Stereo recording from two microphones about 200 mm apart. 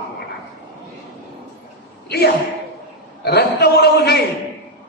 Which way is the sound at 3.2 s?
55° left (ahead or behind).